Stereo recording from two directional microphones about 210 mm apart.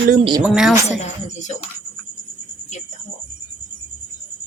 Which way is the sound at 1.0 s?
35° left (ahead or behind).